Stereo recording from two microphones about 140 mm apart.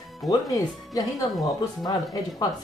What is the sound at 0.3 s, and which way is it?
Speech, 25° left (ahead or behind).